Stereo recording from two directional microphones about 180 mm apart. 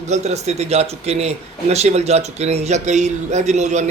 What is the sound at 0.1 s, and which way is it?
A man's voice, 40° right (ahead or behind).